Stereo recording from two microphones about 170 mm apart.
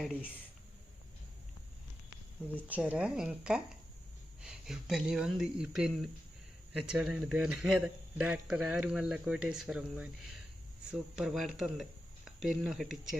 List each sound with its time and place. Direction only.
0.0 s a man's voice: 5° right (ahead or behind)
2.6 s a man's voice: 10° right (ahead or behind)